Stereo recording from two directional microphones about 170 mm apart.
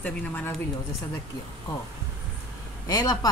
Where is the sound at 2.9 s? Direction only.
20° left (ahead or behind).